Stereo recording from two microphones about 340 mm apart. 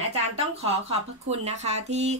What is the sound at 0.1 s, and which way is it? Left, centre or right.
Speech, centre.